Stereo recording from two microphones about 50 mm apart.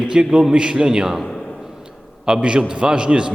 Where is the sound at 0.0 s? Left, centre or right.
Centre.